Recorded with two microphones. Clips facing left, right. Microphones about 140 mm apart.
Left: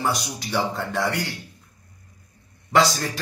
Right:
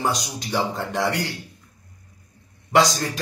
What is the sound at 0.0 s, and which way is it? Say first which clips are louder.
Speech: right 1 dB; 20° right (ahead or behind).